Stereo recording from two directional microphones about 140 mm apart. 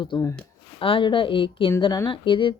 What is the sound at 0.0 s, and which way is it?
Speech, 35° left (ahead or behind).